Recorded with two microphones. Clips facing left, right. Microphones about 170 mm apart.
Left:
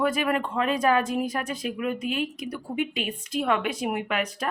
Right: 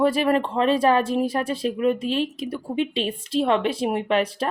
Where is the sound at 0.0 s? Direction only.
30° right (ahead or behind).